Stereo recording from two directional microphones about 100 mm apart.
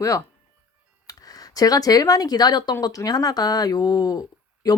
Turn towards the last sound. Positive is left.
turn(degrees=35)  # may be behind; listen again after turning